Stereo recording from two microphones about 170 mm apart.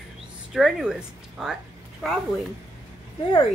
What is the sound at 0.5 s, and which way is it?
Speech, 5° right (ahead or behind).